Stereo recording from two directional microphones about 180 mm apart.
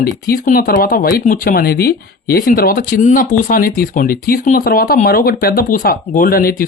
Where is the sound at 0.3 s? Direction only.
50° left (ahead or behind).